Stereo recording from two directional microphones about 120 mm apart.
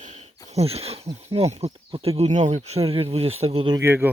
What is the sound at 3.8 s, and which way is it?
Speech, 20° right (ahead or behind).